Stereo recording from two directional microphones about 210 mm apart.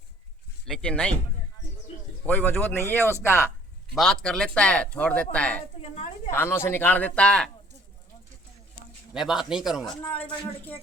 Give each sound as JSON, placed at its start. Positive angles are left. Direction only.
{"t": 0.6, "sound": "speech", "side_deg": 5}
{"t": 2.2, "sound": "speech", "side_deg": 10}
{"t": 3.9, "sound": "speech", "side_deg": 0}
{"t": 5.8, "sound": "a sound", "side_deg": 30}
{"t": 6.3, "sound": "speech", "side_deg": 10}
{"t": 9.1, "sound": "speech", "side_deg": 0}